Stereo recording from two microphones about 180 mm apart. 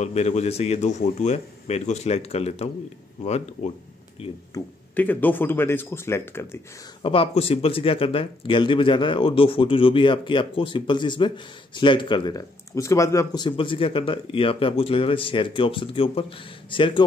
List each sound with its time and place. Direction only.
0.0 s a man's voice: 35° left (ahead or behind)
4.9 s speech: 10° left (ahead or behind)
7.0 s speech: 30° left (ahead or behind)